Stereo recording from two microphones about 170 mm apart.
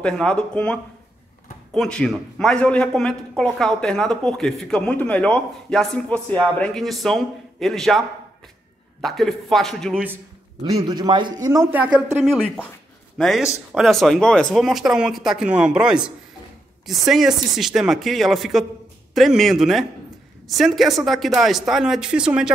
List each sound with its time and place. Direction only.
0.0 s a man's voice: 5° left (ahead or behind)
9.0 s a man's voice: centre (ahead or behind)
10.6 s a man's voice: 25° right (ahead or behind)
11.4 s a man's voice: 15° right (ahead or behind)